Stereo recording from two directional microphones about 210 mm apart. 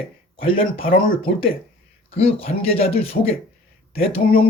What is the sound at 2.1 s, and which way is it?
Speech, 30° left (ahead or behind).